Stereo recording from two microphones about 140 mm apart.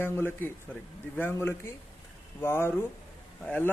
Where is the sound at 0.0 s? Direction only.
15° left (ahead or behind).